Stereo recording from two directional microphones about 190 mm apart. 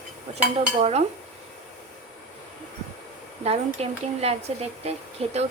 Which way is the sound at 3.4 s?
30° right (ahead or behind).